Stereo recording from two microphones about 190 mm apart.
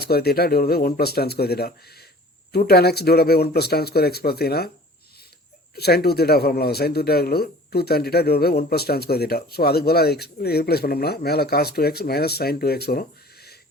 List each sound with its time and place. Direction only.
0.0 s speech: 55° left (ahead or behind)
5.7 s speech: 55° left (ahead or behind)